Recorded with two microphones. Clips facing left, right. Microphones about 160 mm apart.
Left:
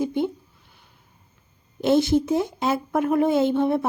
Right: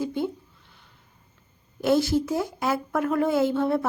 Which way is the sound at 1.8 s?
20° left (ahead or behind).